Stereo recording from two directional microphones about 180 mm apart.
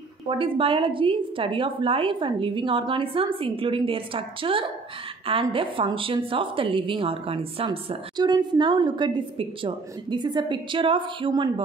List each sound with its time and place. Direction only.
0.3 s a woman's voice: 30° right (ahead or behind)